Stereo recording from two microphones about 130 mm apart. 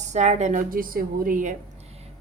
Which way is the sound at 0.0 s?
60° right (ahead or behind).